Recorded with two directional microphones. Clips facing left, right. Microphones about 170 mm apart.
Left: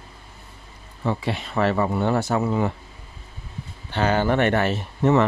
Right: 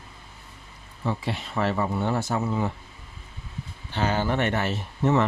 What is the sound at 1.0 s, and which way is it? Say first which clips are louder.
Speech: left 4 dB; 70° left (ahead or behind).